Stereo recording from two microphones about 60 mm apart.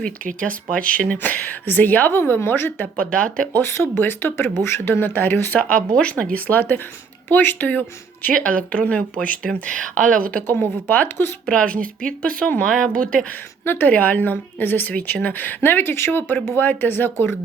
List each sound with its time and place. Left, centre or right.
0.0 s speech: centre; by 2.8 s left
2.8 s speech: left
3.5 s a woman's voice: left
6.0 s a woman's voice: centre
8.4 s a woman's voice: centre
11.4 s speech: centre
12.6 s speech: centre
13.7 s a woman's voice: left